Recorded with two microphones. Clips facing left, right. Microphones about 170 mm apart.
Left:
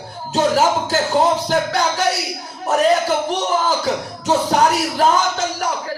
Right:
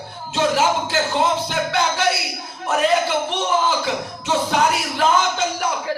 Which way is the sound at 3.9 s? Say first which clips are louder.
Left 4 dB; 40° left (ahead or behind).